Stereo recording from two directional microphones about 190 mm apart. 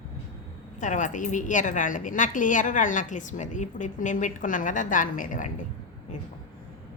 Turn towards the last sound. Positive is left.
turn(degrees=45)  # may be behind; listen again after turning